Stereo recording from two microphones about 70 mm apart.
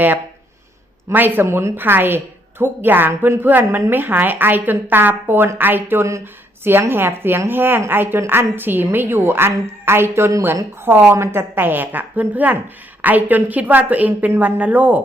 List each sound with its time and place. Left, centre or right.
1.1 s a woman's voice: right